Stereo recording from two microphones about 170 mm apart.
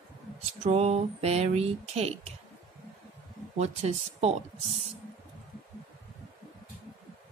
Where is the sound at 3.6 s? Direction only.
40° right (ahead or behind).